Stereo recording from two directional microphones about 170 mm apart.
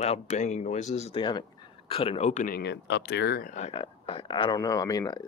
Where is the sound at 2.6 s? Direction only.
90° left; by 3.5 s 65° left (ahead or behind).